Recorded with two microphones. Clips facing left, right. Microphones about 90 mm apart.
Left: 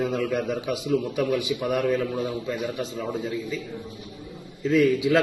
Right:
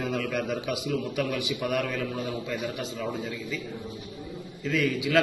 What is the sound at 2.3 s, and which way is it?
Speech, centre (ahead or behind).